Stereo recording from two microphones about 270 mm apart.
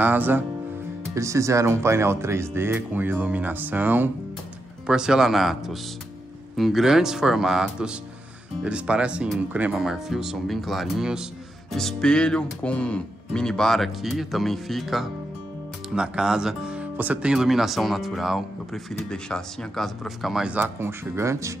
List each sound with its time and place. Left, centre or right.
0.0 s speech: centre